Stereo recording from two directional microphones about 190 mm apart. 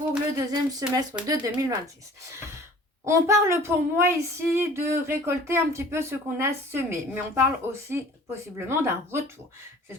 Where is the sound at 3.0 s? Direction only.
15° right (ahead or behind).